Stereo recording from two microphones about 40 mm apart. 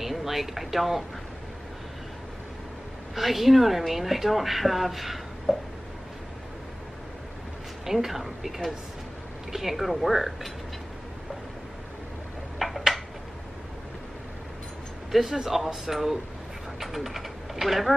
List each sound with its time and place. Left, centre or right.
0.0 s speech: centre
3.2 s speech: centre
7.8 s speech: centre
12.5 s a sound: centre
15.0 s speech: centre